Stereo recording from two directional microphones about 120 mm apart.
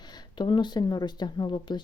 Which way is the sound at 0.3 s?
40° left (ahead or behind).